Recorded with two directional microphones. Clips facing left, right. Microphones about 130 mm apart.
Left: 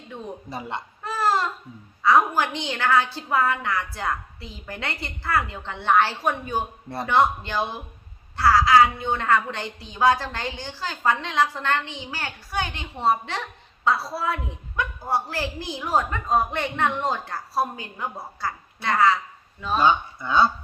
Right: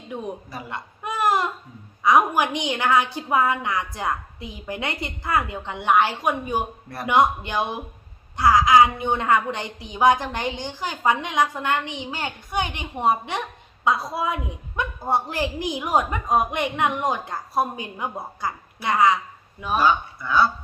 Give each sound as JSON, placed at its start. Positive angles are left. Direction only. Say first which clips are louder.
{"t": 1.0, "sound": "baby cry", "louder": "right 1 dB", "side_deg": -15}
{"t": 2.0, "sound": "a woman's voice", "louder": "right 1 dB", "side_deg": -15}
{"t": 19.8, "sound": "speech", "louder": "left 1 dB", "side_deg": 25}